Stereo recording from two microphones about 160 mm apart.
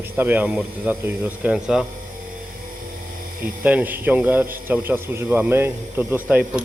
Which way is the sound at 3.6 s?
10° right (ahead or behind).